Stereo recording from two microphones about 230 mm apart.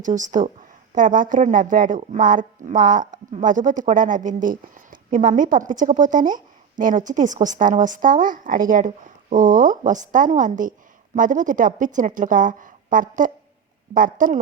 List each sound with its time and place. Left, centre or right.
0.0 s speech: right